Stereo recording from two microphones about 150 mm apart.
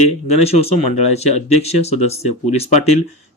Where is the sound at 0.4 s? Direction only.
45° left (ahead or behind).